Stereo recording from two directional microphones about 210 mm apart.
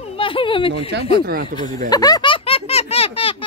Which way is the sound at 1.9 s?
20° left (ahead or behind).